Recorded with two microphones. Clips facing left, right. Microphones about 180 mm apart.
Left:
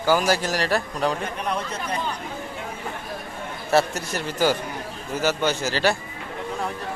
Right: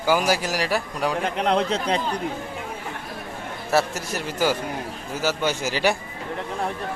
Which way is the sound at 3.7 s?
5° right (ahead or behind).